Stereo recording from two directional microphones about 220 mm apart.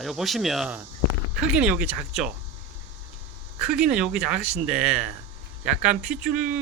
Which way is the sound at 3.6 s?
5° right (ahead or behind).